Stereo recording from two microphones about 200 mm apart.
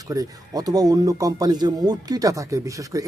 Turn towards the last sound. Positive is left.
turn(degrees=-15)  # may be behind; listen again after turning